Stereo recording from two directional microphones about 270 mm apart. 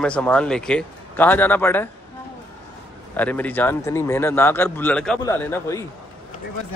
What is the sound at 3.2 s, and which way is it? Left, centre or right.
A man's voice, centre.